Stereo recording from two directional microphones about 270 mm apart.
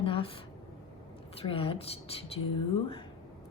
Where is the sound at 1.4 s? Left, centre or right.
Centre.